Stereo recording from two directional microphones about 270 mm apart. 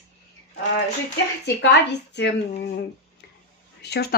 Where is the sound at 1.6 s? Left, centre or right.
Left.